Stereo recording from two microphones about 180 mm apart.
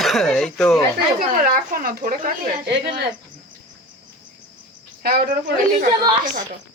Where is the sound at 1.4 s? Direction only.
50° right (ahead or behind).